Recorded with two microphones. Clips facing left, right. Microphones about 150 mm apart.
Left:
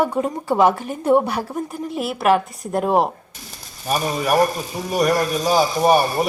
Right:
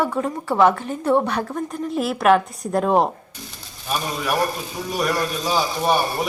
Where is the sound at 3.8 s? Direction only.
40° left (ahead or behind).